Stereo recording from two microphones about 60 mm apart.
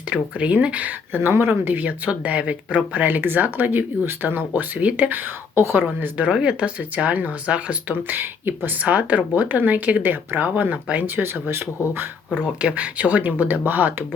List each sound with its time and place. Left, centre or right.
0.1 s speech: right
1.1 s speech: right
2.0 s speech: centre; by 6.2 s right
6.3 s speech: centre
8.0 s speech: right
8.8 s speech: right
12.6 s speech: right